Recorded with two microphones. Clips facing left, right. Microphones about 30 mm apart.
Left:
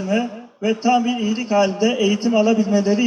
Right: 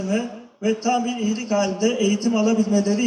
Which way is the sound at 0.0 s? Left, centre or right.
Left.